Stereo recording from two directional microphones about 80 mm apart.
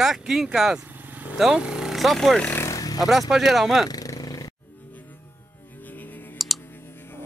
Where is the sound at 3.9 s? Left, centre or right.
Left.